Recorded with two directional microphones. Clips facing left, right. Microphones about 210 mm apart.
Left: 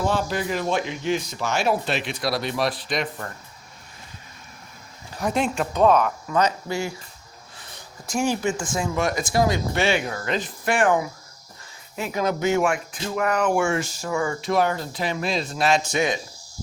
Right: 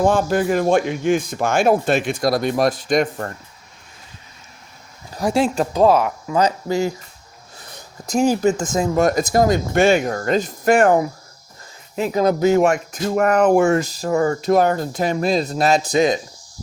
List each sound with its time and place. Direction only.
0.0 s a man's voice: 50° right (ahead or behind)
5.1 s speech: 30° right (ahead or behind)
8.1 s a man's voice: 40° right (ahead or behind)